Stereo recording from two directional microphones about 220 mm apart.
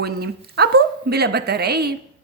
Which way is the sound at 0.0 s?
45° right (ahead or behind).